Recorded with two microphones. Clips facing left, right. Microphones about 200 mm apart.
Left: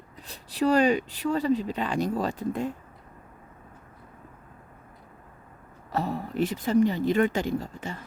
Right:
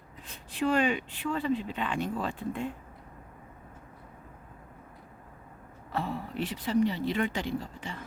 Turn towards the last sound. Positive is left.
turn(degrees=45)  # may be behind; listen again after turning